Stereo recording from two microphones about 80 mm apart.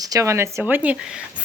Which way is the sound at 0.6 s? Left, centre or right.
Centre.